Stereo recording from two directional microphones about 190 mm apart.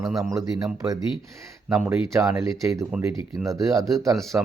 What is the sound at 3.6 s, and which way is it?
Speech, 15° right (ahead or behind).